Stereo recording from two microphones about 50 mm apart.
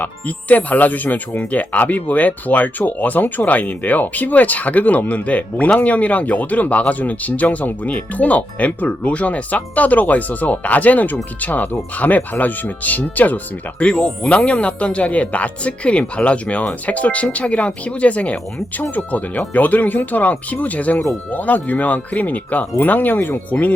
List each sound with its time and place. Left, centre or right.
0.0 s speech: left
13.8 s speech: left